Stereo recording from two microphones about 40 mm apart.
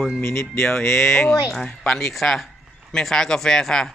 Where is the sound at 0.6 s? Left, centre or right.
Left.